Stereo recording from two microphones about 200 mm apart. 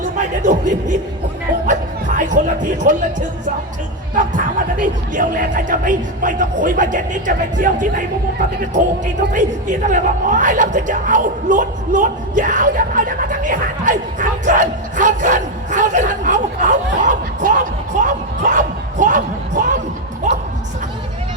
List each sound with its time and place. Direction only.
0.0 s speech: 40° right (ahead or behind)
9.3 s speech: 40° right (ahead or behind)
20.3 s crowd: 35° right (ahead or behind)